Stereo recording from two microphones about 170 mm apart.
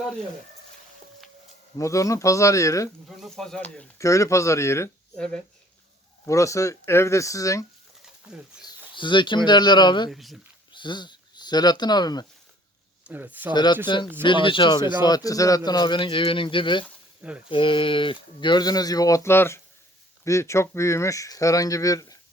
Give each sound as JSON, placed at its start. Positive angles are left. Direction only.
{"t": 1.8, "sound": "speech", "side_deg": 20}
{"t": 3.1, "sound": "speech", "side_deg": 0}
{"t": 3.9, "sound": "speech", "side_deg": 20}
{"t": 5.1, "sound": "speech", "side_deg": 5}
{"t": 6.2, "sound": "speech", "side_deg": 20}
{"t": 8.6, "sound": "speech", "side_deg": 30}
{"t": 10.1, "sound": "speech", "side_deg": 0}
{"t": 10.7, "sound": "speech", "side_deg": 25}
{"t": 13.1, "sound": "speech", "side_deg": -10}
{"t": 13.5, "sound": "speech", "side_deg": 25}